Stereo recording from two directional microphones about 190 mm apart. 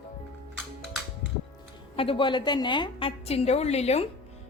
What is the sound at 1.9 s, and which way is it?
A woman's voice, 30° left (ahead or behind).